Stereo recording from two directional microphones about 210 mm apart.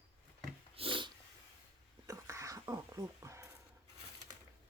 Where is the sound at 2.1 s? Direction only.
15° right (ahead or behind).